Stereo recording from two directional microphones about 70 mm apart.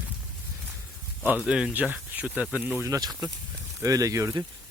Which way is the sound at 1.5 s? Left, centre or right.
Centre.